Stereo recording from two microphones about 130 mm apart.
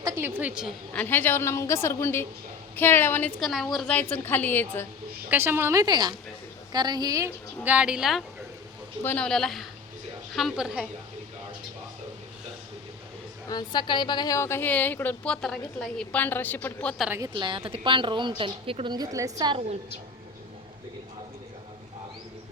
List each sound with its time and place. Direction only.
0.0 s a woman's voice: 15° right (ahead or behind)
0.9 s a woman's voice: 15° left (ahead or behind)
3.4 s a woman's voice: centre (ahead or behind); by 4.9 s 15° left (ahead or behind)
5.3 s a woman's voice: 15° right (ahead or behind)
7.6 s a woman's voice: 10° right (ahead or behind)
9.0 s a woman's voice: 5° left (ahead or behind)
13.5 s a woman's voice: 35° left (ahead or behind); by 16.9 s 10° left (ahead or behind)
17.3 s a woman's voice: 40° right (ahead or behind)